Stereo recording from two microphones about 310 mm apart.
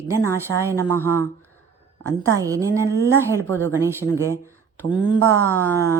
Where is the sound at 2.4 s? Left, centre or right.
Centre.